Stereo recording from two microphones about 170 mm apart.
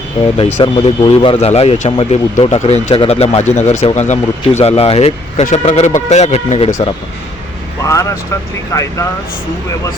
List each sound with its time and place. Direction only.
0.3 s speech: 30° left (ahead or behind)
7.9 s speech: 20° left (ahead or behind)